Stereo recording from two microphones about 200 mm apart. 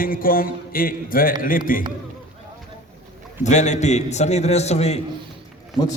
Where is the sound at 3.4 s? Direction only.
35° left (ahead or behind).